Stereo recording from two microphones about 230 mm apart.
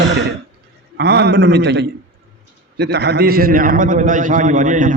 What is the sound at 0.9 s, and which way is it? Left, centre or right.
A man's voice, right.